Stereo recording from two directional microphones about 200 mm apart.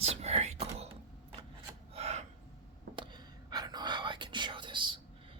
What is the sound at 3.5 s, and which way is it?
Whispering, 20° right (ahead or behind).